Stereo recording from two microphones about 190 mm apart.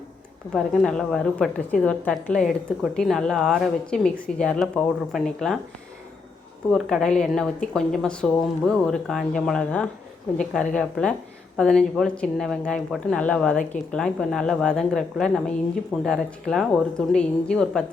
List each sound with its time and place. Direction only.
0.5 s a woman's voice: centre (ahead or behind)
6.7 s a woman's voice: centre (ahead or behind)